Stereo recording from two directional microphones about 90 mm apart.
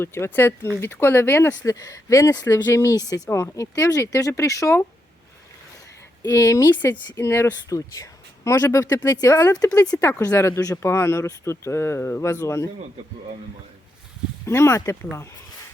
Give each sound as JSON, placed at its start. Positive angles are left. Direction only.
{"t": 0.0, "sound": "speech", "side_deg": 25}
{"t": 3.2, "sound": "speech", "side_deg": 30}
{"t": 6.2, "sound": "speech", "side_deg": 35}
{"t": 14.4, "sound": "speech", "side_deg": 30}